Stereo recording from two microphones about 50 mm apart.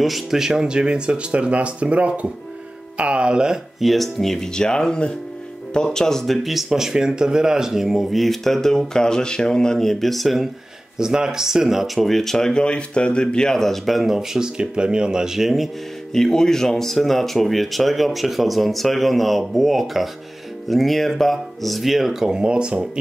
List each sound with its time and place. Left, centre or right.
0.0 s speech: centre
3.8 s speech: centre
11.0 s speech: centre
16.1 s speech: centre